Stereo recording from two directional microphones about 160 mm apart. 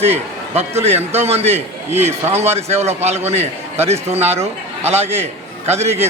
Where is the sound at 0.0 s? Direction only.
40° right (ahead or behind).